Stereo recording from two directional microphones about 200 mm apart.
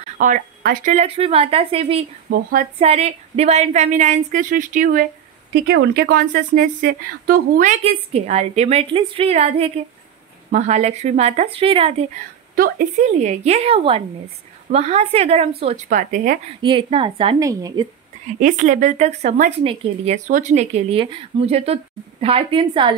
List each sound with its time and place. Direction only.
0.2 s speech: 45° right (ahead or behind)
0.9 s a woman's voice: 30° right (ahead or behind)
2.2 s speech: 45° right (ahead or behind)
2.8 s speech: 30° right (ahead or behind)
5.5 s speech: 55° right (ahead or behind); by 12.1 s 25° right (ahead or behind)
12.5 s speech: 40° right (ahead or behind)
16.6 s a woman's voice: 25° right (ahead or behind)
17.4 s speech: 15° right (ahead or behind)
18.4 s a woman's voice: 40° right (ahead or behind)
20.2 s a woman's voice: 40° right (ahead or behind)